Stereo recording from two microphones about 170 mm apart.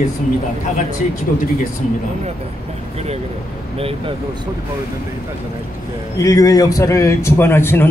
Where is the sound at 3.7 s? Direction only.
35° right (ahead or behind).